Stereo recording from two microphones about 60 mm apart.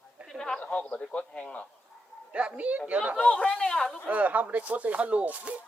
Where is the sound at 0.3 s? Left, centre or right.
Centre.